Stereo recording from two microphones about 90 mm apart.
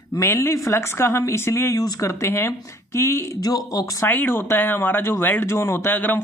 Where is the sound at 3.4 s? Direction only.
45° left (ahead or behind).